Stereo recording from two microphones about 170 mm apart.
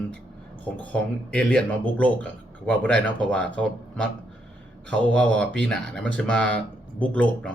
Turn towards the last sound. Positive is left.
turn(degrees=5)  # may be behind; listen again after turning